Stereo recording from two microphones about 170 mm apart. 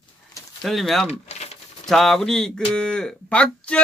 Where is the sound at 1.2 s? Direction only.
40° left (ahead or behind).